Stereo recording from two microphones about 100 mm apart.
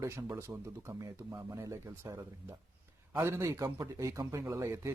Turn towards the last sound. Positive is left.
turn(degrees=-25)  # may be behind; listen again after turning